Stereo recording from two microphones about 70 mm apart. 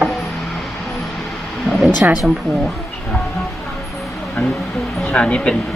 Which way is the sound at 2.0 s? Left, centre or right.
Right.